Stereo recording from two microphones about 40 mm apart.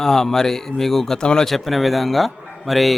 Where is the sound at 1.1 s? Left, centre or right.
Centre.